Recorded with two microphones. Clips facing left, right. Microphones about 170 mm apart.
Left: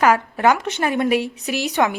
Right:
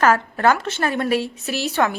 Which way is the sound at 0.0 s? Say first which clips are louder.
Left 1 dB; 15° left (ahead or behind).